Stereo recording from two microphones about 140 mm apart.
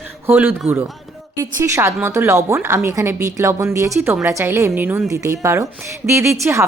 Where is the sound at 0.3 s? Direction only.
15° right (ahead or behind).